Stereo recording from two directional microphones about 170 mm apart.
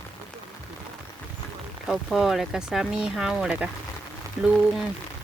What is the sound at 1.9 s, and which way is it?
Speech, centre (ahead or behind).